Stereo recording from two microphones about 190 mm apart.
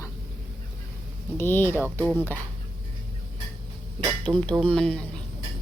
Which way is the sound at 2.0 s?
10° right (ahead or behind).